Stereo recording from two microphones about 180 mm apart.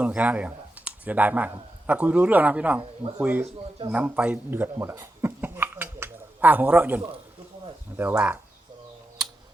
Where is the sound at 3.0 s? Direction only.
30° right (ahead or behind).